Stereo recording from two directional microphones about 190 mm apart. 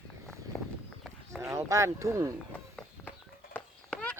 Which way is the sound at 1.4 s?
15° right (ahead or behind).